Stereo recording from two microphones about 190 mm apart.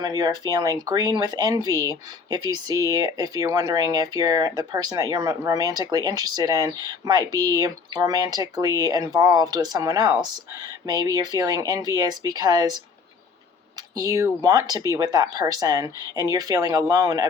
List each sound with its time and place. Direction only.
0.0 s speech: 20° right (ahead or behind)
14.0 s speech: 15° right (ahead or behind)